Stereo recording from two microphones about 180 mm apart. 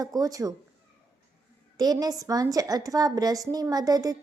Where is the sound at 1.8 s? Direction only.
20° right (ahead or behind).